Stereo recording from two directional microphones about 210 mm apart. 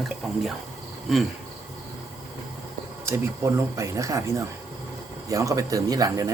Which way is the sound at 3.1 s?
15° right (ahead or behind).